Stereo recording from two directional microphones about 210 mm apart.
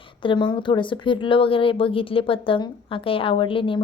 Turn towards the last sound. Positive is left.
turn(degrees=25)  # may be behind; listen again after turning